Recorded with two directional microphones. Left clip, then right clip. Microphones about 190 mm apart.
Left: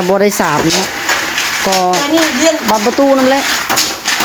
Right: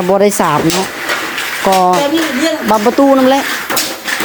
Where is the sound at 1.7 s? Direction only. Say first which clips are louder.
Right 4 dB; 20° right (ahead or behind).